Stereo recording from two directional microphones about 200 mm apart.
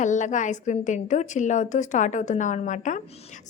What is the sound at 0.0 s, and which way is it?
A woman's voice, 40° left (ahead or behind).